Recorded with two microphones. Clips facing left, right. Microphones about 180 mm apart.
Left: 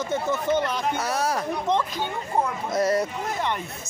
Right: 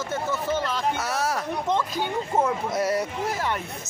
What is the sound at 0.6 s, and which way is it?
Speech, 15° left (ahead or behind).